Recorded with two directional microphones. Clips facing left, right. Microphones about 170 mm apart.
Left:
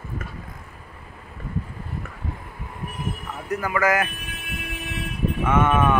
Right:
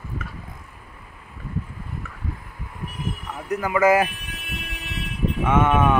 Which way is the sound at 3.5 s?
15° right (ahead or behind).